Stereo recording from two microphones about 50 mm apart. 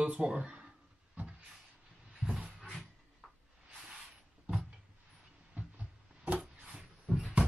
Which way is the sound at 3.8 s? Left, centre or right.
Centre.